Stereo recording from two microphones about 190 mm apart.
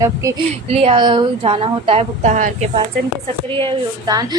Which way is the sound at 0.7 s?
30° right (ahead or behind).